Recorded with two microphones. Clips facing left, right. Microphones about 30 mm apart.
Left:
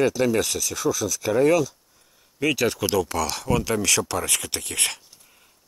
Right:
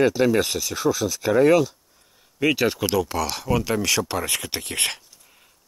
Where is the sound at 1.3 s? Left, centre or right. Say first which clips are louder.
Right 2 dB; centre.